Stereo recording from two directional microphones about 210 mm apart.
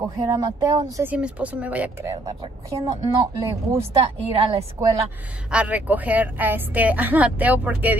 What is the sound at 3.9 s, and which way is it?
Speech, 25° right (ahead or behind).